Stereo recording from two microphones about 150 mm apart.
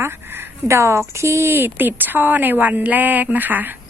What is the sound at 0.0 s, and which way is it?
Speech, 15° right (ahead or behind).